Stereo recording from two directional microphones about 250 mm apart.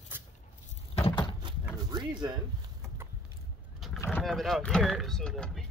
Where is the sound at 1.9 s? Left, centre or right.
Centre.